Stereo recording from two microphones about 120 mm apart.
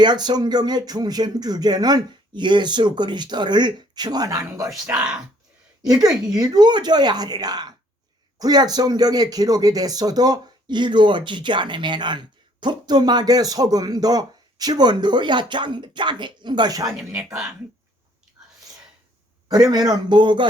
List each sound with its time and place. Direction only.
0.0 s speech: 35° right (ahead or behind)
4.9 s speech: 10° right (ahead or behind)
6.2 s speech: 30° right (ahead or behind)
17.0 s speech: 5° right (ahead or behind)
19.7 s speech: 35° right (ahead or behind)